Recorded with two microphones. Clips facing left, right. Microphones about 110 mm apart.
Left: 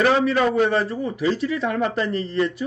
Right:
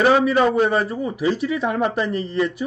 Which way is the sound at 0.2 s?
10° right (ahead or behind).